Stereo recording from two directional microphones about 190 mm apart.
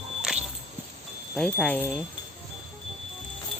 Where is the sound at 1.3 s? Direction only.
5° left (ahead or behind).